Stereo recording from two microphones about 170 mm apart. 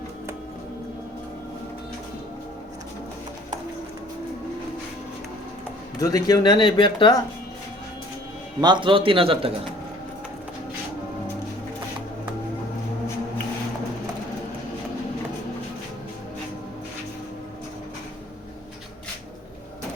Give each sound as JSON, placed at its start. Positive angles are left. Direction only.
{"t": 6.0, "sound": "speech", "side_deg": 20}
{"t": 8.6, "sound": "a man's voice", "side_deg": -30}